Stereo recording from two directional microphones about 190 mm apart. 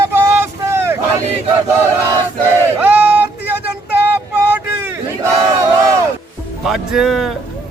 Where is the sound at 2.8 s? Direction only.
10° right (ahead or behind).